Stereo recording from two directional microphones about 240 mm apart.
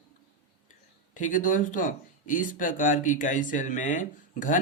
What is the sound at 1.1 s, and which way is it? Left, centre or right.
Speech, left.